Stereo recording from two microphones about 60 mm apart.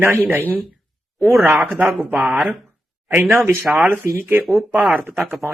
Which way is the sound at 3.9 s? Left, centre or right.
Right.